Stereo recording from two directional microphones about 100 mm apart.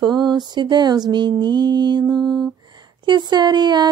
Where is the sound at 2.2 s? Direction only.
Centre (ahead or behind).